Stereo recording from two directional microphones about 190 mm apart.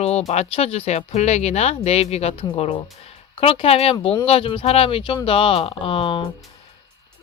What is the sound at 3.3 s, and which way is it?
Speech, 30° left (ahead or behind).